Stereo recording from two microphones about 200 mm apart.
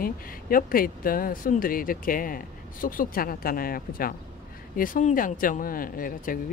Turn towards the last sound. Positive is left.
turn(degrees=45)  # may be behind; listen again after turning